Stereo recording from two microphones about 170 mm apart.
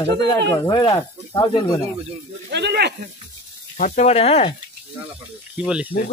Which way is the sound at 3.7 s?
45° left (ahead or behind).